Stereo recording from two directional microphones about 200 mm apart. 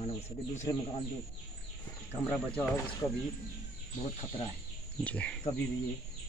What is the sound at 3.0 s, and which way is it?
Speech, 15° left (ahead or behind).